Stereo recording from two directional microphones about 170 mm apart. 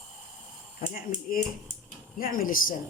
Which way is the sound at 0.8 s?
55° left (ahead or behind).